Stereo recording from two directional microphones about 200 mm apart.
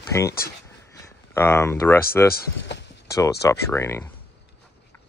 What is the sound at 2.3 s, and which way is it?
Speech, 60° left (ahead or behind).